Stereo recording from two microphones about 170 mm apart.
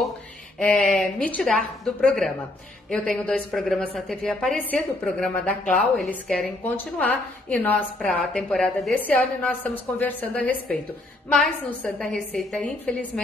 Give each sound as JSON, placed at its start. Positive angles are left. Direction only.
{"t": 0.6, "sound": "a woman's voice", "side_deg": 5}